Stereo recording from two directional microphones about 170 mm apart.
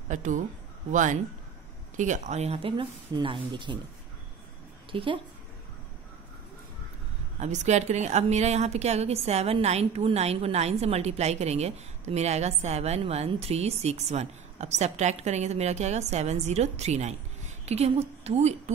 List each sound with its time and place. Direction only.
0.1 s a woman's voice: 45° right (ahead or behind); by 3.8 s 30° right (ahead or behind)
4.9 s a woman's voice: 30° right (ahead or behind)
7.3 s a woman's voice: 45° right (ahead or behind)